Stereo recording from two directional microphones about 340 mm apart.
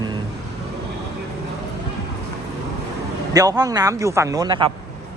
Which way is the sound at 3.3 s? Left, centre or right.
Centre.